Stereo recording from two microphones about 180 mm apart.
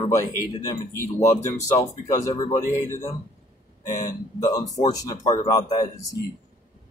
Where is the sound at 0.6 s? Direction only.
15° left (ahead or behind).